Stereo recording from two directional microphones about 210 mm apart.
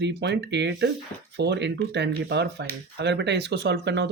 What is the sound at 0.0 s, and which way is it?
Speech, 55° right (ahead or behind).